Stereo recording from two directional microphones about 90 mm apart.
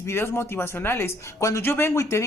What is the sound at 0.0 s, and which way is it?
A woman's voice, 30° left (ahead or behind).